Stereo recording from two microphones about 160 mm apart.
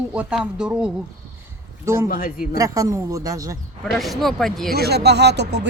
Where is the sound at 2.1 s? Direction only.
60° left (ahead or behind).